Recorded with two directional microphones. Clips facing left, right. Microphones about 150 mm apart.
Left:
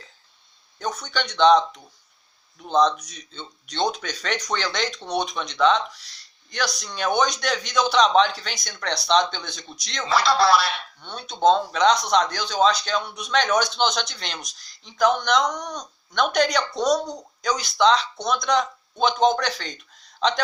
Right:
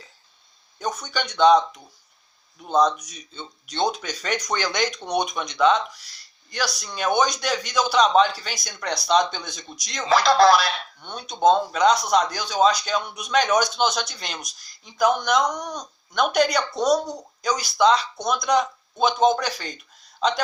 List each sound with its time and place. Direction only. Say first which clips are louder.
0.8 s speech: even; 10° right (ahead or behind)
10.2 s speech: right 2 dB; 45° right (ahead or behind)
11.0 s speech: even; 10° right (ahead or behind)